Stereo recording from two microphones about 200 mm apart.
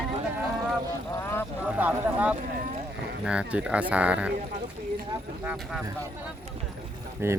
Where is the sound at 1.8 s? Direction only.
5° right (ahead or behind).